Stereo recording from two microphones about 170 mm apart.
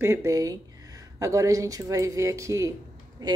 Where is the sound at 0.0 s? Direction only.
15° right (ahead or behind).